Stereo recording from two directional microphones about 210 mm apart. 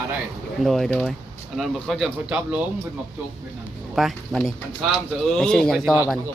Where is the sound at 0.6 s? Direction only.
Centre (ahead or behind).